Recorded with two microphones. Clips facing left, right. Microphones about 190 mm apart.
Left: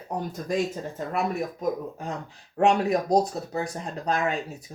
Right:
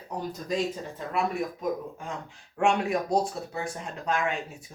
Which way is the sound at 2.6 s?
35° left (ahead or behind).